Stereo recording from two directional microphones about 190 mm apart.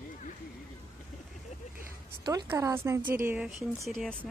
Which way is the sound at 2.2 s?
20° right (ahead or behind).